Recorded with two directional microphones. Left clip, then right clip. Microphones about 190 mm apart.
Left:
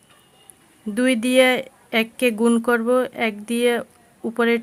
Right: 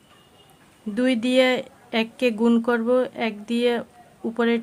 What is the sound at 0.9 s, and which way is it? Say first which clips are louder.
Speech: left 3 dB; 20° left (ahead or behind).